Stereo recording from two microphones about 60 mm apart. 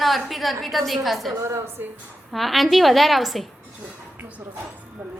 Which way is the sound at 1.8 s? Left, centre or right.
Right.